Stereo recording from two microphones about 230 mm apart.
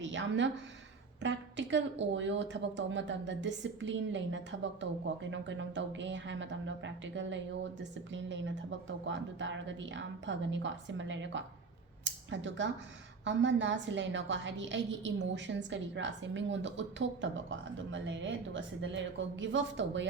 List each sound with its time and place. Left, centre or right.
0.0 s a woman's voice: right